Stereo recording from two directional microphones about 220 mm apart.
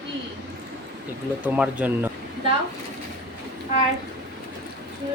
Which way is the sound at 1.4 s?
5° right (ahead or behind).